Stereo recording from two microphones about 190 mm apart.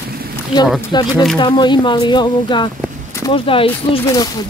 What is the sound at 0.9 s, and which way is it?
Speech, 25° left (ahead or behind).